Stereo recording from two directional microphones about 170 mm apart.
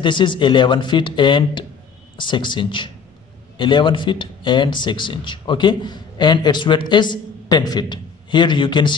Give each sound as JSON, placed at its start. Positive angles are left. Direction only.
{"t": 0.0, "sound": "speech", "side_deg": 30}